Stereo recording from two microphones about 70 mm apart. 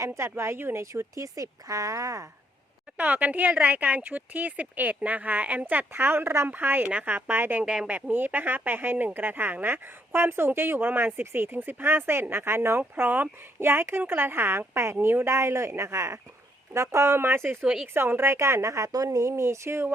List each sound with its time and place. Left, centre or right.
0.0 s a woman's voice: right
3.0 s speech: right
7.6 s speech: centre
7.9 s speech: right
13.0 s a woman's voice: right